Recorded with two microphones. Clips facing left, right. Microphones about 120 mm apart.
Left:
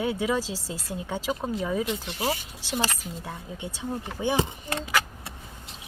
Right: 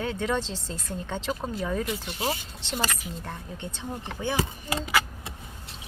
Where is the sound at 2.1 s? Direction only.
15° left (ahead or behind).